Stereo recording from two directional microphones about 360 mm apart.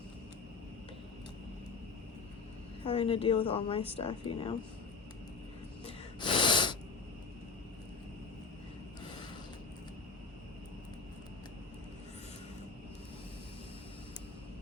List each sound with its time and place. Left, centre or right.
2.8 s a woman's voice: centre
5.8 s gasp: centre